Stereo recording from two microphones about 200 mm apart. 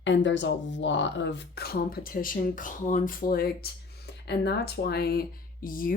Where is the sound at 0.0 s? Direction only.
65° left (ahead or behind).